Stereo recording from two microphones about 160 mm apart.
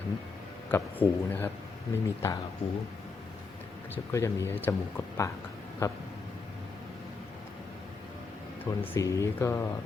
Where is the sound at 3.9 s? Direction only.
15° left (ahead or behind).